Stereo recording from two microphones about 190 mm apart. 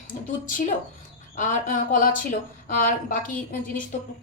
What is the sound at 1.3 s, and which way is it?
A woman's voice, 40° left (ahead or behind).